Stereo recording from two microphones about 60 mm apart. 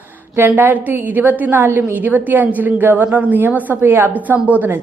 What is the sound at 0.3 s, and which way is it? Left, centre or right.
A woman's voice, right.